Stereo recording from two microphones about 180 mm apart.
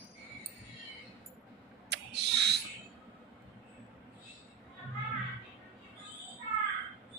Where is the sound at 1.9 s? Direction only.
65° right (ahead or behind).